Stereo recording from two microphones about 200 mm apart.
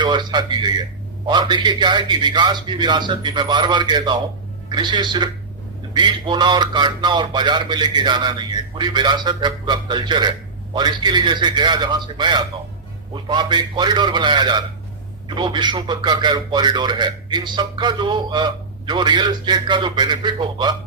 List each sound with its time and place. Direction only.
0.0 s a man's voice: 20° right (ahead or behind)